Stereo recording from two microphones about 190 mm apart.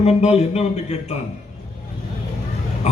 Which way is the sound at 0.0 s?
35° left (ahead or behind).